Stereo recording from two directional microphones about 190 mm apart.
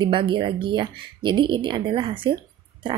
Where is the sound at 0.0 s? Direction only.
25° right (ahead or behind).